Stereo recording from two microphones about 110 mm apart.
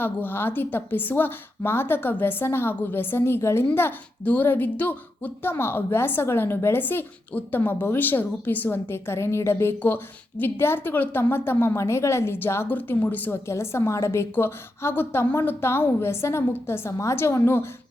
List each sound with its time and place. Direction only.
0.0 s a woman's voice: 20° left (ahead or behind)